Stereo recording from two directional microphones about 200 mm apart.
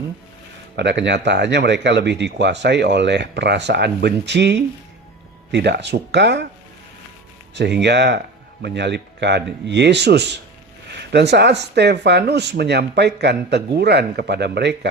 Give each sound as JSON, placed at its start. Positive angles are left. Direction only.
{"t": 0.8, "sound": "speech", "side_deg": -60}
{"t": 7.5, "sound": "speech", "side_deg": -60}